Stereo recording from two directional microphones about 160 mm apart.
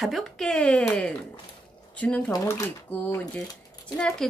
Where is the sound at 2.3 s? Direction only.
20° left (ahead or behind).